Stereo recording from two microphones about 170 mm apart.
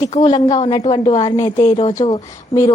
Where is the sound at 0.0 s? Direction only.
40° left (ahead or behind).